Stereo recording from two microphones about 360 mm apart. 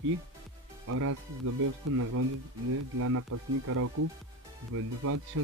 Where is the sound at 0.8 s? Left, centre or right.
Right.